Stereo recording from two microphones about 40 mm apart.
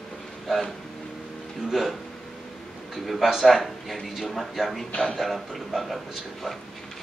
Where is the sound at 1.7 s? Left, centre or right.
Centre.